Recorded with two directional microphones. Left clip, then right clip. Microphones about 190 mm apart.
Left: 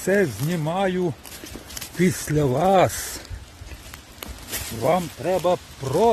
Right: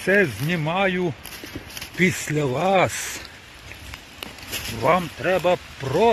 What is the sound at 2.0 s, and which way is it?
Speech, 30° left (ahead or behind).